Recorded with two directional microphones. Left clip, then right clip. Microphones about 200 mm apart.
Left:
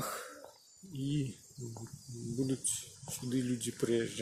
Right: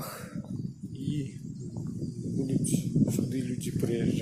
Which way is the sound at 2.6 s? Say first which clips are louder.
Right 12 dB; centre (ahead or behind).